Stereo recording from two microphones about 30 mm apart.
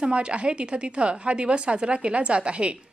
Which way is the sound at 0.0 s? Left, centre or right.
Right.